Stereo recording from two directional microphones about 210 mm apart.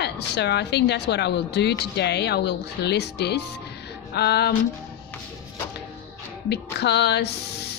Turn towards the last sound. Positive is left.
turn(degrees=50)  # may be behind; listen again after turning